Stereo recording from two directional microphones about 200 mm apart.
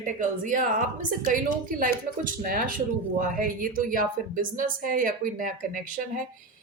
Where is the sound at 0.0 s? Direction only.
40° right (ahead or behind).